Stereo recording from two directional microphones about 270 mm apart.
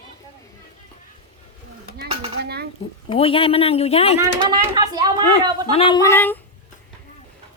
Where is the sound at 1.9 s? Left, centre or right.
Right.